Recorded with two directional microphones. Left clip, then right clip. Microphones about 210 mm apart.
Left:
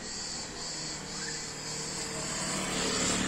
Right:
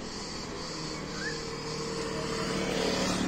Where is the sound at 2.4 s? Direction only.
50° left (ahead or behind).